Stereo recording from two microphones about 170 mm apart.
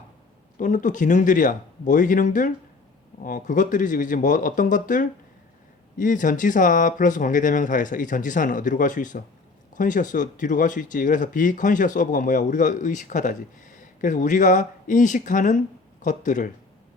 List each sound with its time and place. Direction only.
0.6 s speech: 50° left (ahead or behind)